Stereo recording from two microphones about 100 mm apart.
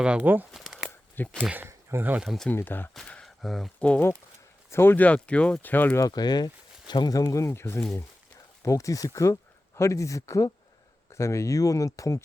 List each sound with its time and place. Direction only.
0.0 s speech: 15° right (ahead or behind)
0.5 s crumpling: 5° right (ahead or behind)
1.1 s speech: 15° left (ahead or behind)
1.4 s speech: 15° right (ahead or behind)
2.2 s speech: centre (ahead or behind)
2.5 s speech: 20° left (ahead or behind)
3.2 s a sound: centre (ahead or behind)
3.8 s speech: 10° left (ahead or behind)
4.7 s speech: 25° left (ahead or behind)
6.0 s speech: 40° left (ahead or behind)